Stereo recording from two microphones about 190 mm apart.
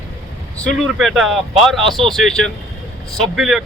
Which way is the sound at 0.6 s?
5° left (ahead or behind).